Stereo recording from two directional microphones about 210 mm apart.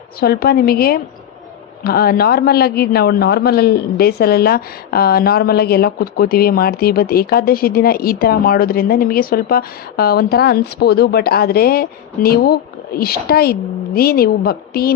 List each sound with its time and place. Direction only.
0.2 s a man's voice: 45° left (ahead or behind)